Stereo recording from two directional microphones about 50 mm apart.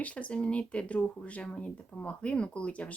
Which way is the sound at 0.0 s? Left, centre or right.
Left.